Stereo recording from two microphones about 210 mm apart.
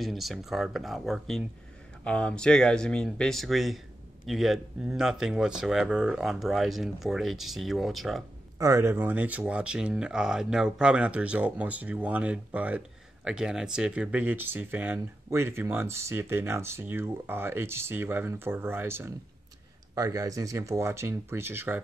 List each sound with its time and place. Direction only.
0.0 s speech: centre (ahead or behind)
8.5 s speech: 15° right (ahead or behind)